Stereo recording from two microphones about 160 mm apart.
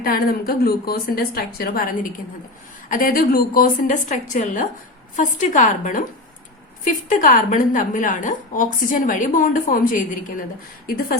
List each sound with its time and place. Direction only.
0.0 s a woman's voice: 65° left (ahead or behind)